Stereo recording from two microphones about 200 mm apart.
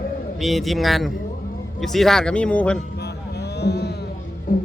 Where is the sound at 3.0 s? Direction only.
55° left (ahead or behind).